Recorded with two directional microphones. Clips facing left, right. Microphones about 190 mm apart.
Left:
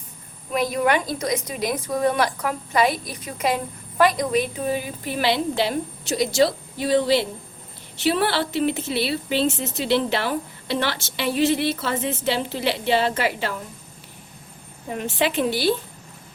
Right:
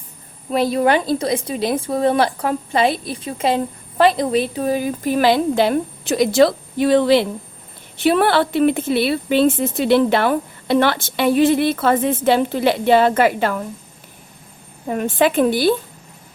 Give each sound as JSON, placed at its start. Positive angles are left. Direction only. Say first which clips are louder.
{"t": 0.5, "sound": "a woman's voice", "louder": "right 5 dB", "side_deg": -30}
{"t": 14.8, "sound": "speech", "louder": "right 7 dB", "side_deg": -50}